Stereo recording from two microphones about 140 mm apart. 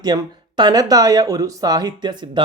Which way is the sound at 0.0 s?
30° right (ahead or behind).